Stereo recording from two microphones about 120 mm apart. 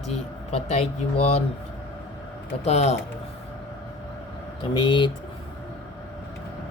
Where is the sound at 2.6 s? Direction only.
65° left (ahead or behind).